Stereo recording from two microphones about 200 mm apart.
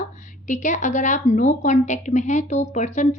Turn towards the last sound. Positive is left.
turn(degrees=35)  # may be behind; listen again after turning